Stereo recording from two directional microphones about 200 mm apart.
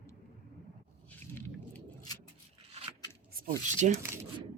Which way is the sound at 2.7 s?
30° right (ahead or behind).